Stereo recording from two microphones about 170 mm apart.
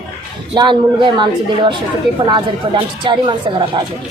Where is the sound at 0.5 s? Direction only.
25° right (ahead or behind).